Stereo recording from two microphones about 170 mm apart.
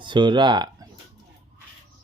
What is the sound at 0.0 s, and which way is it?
Speech, 25° right (ahead or behind).